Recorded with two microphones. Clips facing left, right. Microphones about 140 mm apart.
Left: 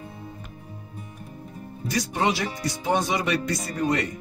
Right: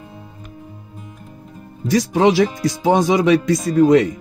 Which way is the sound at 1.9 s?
90° right.